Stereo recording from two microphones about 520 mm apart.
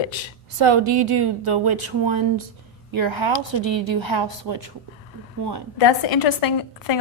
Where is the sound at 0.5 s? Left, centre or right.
Right.